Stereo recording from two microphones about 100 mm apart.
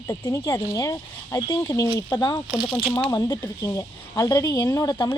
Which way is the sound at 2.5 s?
Centre (ahead or behind).